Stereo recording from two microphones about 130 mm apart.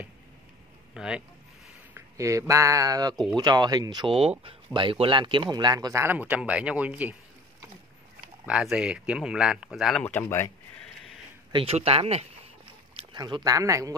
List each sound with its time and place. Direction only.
0.9 s speech: 5° right (ahead or behind)
2.0 s speech: 25° right (ahead or behind)
6.0 s speech: 10° right (ahead or behind)
8.5 s speech: 5° right (ahead or behind)
10.0 s speech: 15° left (ahead or behind)
11.5 s speech: 50° right (ahead or behind)
12.9 s speech: 35° right (ahead or behind)